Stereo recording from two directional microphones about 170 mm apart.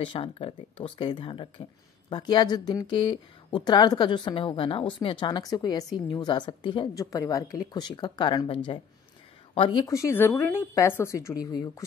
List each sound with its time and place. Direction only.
0.0 s a woman's voice: 30° left (ahead or behind)